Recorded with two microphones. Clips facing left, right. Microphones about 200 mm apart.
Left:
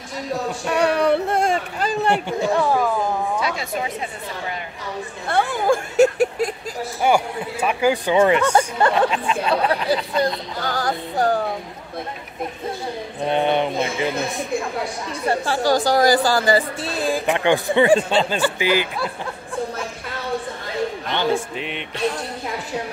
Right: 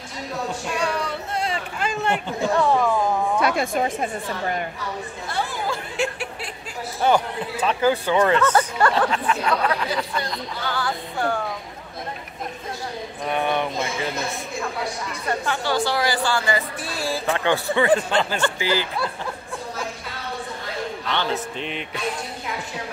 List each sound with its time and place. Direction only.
0.7 s a sound: 65° left (ahead or behind); by 2.2 s 35° left (ahead or behind)
2.5 s speech: 5° left (ahead or behind)
3.3 s a woman's voice: 55° right (ahead or behind)
5.3 s speech: 60° left (ahead or behind)
5.9 s a sound: 45° left (ahead or behind)
7.0 s speech: 10° left (ahead or behind)
10.2 s a woman's voice: 40° left (ahead or behind)
13.2 s speech: 25° left (ahead or behind)
15.2 s a woman's voice: 35° left (ahead or behind)
16.8 s speech: 20° left (ahead or behind)
21.1 s speech: 15° left (ahead or behind)
21.5 s music: centre (ahead or behind)